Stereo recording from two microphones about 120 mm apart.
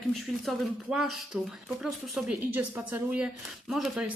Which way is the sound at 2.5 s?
15° right (ahead or behind).